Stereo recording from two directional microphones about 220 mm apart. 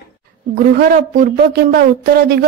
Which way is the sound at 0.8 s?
40° right (ahead or behind).